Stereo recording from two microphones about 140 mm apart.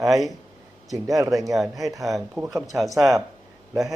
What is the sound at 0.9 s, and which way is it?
Speech, 25° right (ahead or behind).